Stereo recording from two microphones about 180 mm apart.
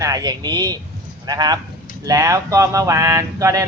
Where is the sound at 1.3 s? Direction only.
20° right (ahead or behind).